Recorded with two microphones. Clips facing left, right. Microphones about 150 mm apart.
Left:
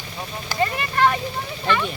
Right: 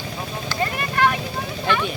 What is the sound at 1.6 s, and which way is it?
Vehicle, centre (ahead or behind).